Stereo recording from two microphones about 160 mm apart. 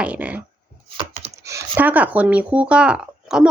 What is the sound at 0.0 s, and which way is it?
Speech, 10° right (ahead or behind).